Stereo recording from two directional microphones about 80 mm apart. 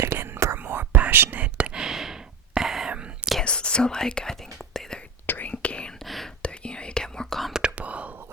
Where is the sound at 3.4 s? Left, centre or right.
Centre.